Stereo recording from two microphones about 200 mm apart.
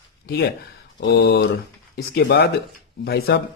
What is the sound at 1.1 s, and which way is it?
A man's voice, 55° left (ahead or behind).